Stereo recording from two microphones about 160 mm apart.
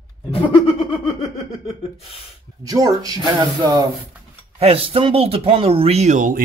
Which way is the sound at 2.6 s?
20° right (ahead or behind).